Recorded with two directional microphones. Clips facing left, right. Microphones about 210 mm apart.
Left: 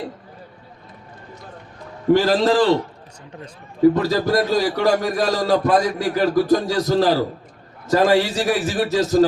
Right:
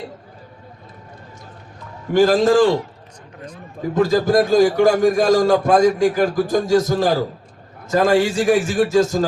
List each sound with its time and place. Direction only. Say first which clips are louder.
2.1 s a man's voice: right 4 dB; 50° right (ahead or behind)
3.9 s a man's voice: right 3 dB; 50° right (ahead or behind)